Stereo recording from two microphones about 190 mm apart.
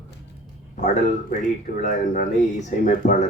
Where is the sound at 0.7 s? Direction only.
40° left (ahead or behind).